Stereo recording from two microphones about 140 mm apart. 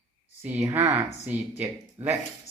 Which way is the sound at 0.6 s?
15° right (ahead or behind).